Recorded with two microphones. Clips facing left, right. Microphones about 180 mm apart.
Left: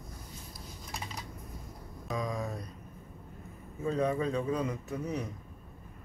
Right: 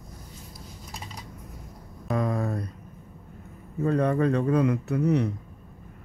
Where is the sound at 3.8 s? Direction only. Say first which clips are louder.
Right 7 dB; 65° right (ahead or behind).